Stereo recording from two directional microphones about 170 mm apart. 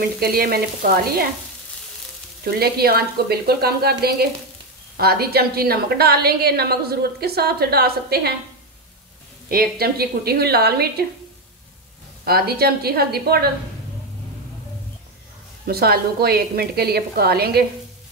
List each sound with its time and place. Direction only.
0.0 s a woman's voice: 60° right (ahead or behind)
2.4 s a woman's voice: 65° right (ahead or behind)
9.5 s a woman's voice: 65° right (ahead or behind)
12.3 s a woman's voice: 65° right (ahead or behind)
15.6 s a woman's voice: 65° right (ahead or behind)